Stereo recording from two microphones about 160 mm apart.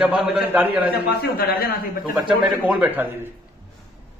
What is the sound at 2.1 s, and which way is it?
A man's voice, 10° right (ahead or behind).